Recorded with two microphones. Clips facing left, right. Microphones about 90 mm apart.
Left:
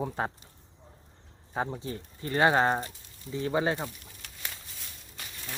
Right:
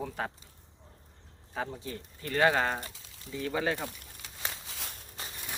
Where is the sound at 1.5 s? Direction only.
30° left (ahead or behind).